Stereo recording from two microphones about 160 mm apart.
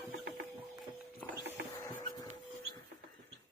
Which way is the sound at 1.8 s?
25° left (ahead or behind).